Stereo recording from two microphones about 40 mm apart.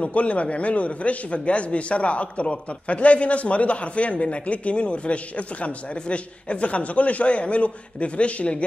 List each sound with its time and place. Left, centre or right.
0.0 s a man's voice: left